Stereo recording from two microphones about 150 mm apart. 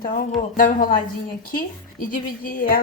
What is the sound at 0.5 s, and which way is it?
Speech, 60° left (ahead or behind).